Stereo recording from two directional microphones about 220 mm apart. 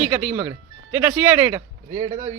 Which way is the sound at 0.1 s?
5° right (ahead or behind).